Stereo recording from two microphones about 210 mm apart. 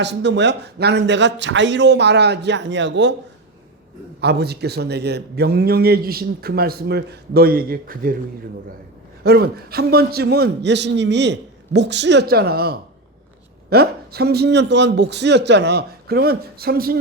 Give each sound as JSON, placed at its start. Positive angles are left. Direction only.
{"t": 0.0, "sound": "a man's voice", "side_deg": -55}
{"t": 4.2, "sound": "a man's voice", "side_deg": -50}
{"t": 9.2, "sound": "a man's voice", "side_deg": -50}